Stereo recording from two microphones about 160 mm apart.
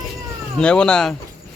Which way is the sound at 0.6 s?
5° left (ahead or behind).